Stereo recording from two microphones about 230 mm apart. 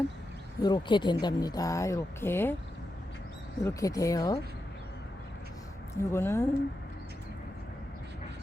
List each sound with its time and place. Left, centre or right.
0.6 s a woman's voice: centre
3.6 s a woman's voice: centre
6.0 s a woman's voice: centre